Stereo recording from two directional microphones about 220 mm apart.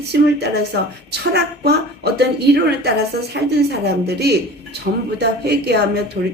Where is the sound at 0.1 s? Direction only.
50° right (ahead or behind).